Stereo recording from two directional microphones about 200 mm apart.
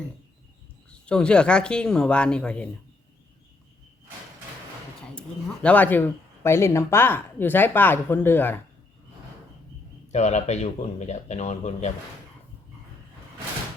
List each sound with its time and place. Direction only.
0.9 s speech: 5° left (ahead or behind)
5.6 s speech: 10° left (ahead or behind)
10.1 s speech: 35° left (ahead or behind)